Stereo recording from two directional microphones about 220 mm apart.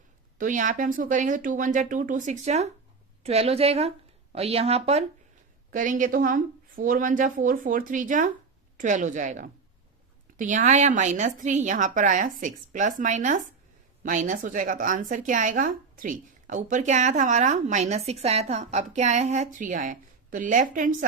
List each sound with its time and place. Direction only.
0.3 s a woman's voice: 35° right (ahead or behind)